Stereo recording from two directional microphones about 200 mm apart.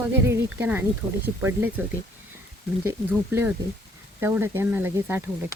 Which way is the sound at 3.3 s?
10° right (ahead or behind).